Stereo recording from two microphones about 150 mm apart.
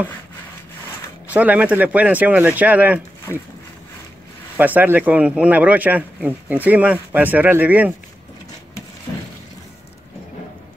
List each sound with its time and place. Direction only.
1.3 s speech: 10° right (ahead or behind)
3.3 s speech: 15° left (ahead or behind)
4.6 s speech: 10° right (ahead or behind)